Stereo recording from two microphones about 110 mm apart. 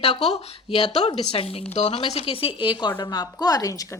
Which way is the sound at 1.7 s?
75° left (ahead or behind).